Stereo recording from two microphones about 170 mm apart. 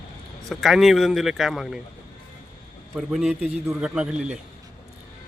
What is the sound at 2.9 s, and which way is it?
Speech, 5° right (ahead or behind).